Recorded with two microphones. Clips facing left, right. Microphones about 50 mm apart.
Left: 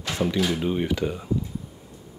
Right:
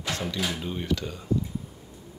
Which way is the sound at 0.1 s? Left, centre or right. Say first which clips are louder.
Left 6 dB; centre.